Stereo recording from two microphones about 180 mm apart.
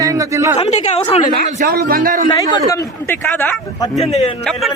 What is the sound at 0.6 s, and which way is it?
Speech, 35° left (ahead or behind).